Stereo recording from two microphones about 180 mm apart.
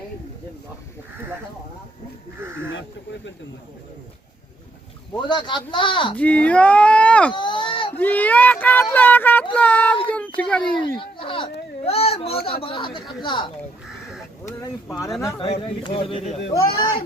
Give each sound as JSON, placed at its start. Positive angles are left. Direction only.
{"t": 2.7, "sound": "speech", "side_deg": 90}
{"t": 5.1, "sound": "speech", "side_deg": 25}
{"t": 6.1, "sound": "speech", "side_deg": 10}
{"t": 7.3, "sound": "a sound", "side_deg": 25}
{"t": 7.9, "sound": "a child's voice", "side_deg": 10}
{"t": 11.2, "sound": "a sound", "side_deg": 30}
{"t": 12.6, "sound": "speech", "side_deg": 30}
{"t": 15.4, "sound": "speech", "side_deg": 35}
{"t": 16.6, "sound": "speech", "side_deg": 20}